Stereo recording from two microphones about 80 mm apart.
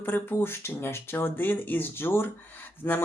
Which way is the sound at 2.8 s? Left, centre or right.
Left.